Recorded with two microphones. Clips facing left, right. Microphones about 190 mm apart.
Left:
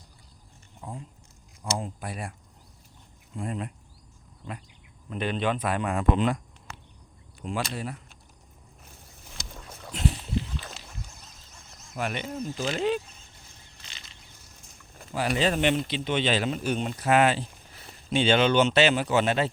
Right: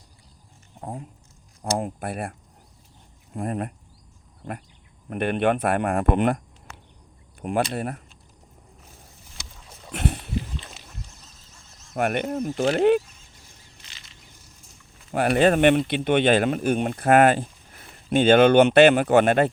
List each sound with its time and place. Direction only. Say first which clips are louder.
0.8 s speech: right 5 dB; 55° right (ahead or behind)
3.3 s speech: right 5 dB; 55° right (ahead or behind)
5.0 s speech: right 6 dB; 60° right (ahead or behind)
7.7 s speech: right 6 dB; 55° right (ahead or behind)
9.9 s a sound: right 2 dB; 55° right (ahead or behind)
11.9 s speech: right 7 dB; 55° right (ahead or behind)
15.1 s speech: right 7 dB; 55° right (ahead or behind)